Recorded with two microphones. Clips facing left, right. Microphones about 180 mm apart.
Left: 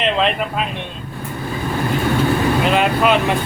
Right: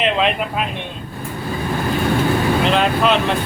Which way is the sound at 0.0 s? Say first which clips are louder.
Even; 5° right (ahead or behind).